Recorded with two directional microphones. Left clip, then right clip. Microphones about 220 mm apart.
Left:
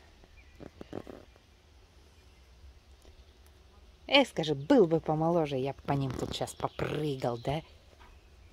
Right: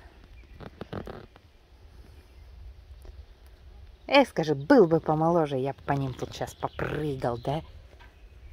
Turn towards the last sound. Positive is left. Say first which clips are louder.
# right 3 dB
turn(degrees=-10)  # may be behind; listen again after turning